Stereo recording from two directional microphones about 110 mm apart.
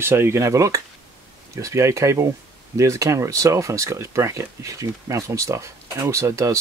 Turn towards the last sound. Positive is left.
turn(degrees=-30)  # may be behind; listen again after turning